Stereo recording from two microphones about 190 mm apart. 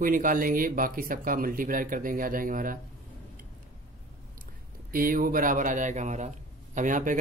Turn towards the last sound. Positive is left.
turn(degrees=-45)  # may be behind; listen again after turning